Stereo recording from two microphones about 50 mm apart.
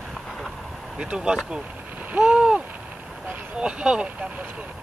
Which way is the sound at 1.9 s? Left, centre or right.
Right.